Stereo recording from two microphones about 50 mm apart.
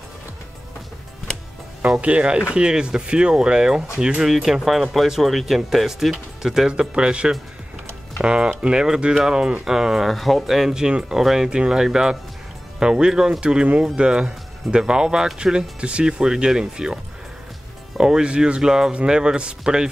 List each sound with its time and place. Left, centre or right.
2.0 s speech: right
9.7 s speech: centre